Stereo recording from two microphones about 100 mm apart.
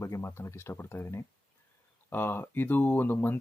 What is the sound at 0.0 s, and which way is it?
Speech, 30° left (ahead or behind).